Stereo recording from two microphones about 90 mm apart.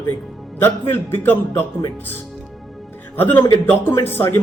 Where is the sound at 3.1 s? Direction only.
20° left (ahead or behind).